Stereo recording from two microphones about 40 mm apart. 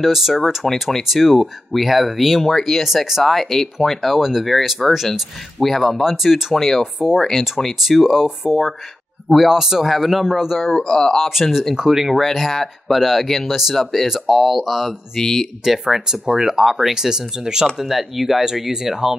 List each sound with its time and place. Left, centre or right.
0.0 s speech: centre
2.4 s speech: centre
6.5 s speech: centre
10.8 s speech: centre
11.1 s speech: centre
11.7 s speech: centre
12.3 s speech: centre